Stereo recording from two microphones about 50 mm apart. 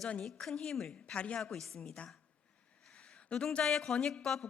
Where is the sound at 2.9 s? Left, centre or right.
Centre.